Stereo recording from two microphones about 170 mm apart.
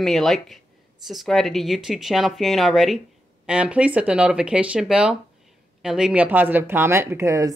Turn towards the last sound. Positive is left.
turn(degrees=-15)  # may be behind; listen again after turning